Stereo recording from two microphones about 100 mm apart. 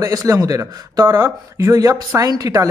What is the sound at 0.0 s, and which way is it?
Speech, 35° right (ahead or behind).